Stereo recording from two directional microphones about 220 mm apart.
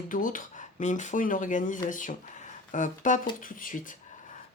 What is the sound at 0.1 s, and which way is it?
Speech, 40° left (ahead or behind).